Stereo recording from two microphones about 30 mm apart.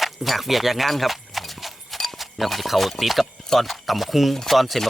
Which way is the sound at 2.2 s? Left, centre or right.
Centre.